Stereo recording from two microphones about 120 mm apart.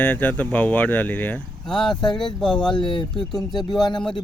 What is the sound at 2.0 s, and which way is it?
Speech, 40° left (ahead or behind).